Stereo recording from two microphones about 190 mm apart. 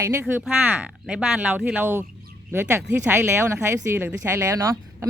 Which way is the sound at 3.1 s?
15° right (ahead or behind).